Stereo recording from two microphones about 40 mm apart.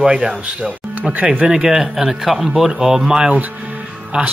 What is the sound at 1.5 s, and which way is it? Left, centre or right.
A man's voice, centre.